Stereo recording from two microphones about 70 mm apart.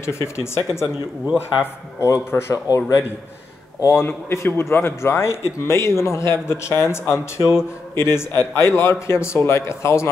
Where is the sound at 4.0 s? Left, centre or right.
Left.